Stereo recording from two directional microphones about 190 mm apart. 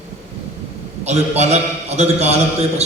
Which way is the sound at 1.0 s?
35° right (ahead or behind).